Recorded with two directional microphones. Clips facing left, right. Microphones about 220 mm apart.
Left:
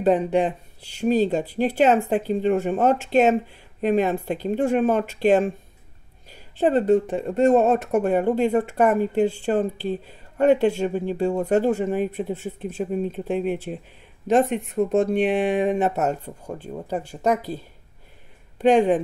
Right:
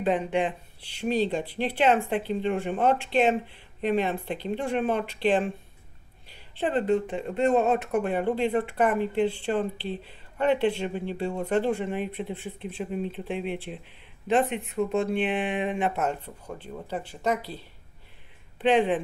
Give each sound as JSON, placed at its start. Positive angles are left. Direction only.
{"t": 0.0, "sound": "speech", "side_deg": 40}